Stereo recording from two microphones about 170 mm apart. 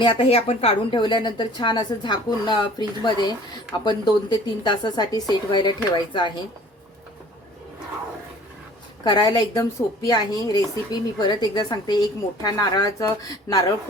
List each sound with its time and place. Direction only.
0.0 s a woman's voice: 30° left (ahead or behind)
9.0 s a woman's voice: 25° left (ahead or behind)